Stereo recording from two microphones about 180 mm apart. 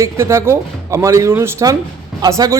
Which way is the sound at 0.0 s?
15° right (ahead or behind).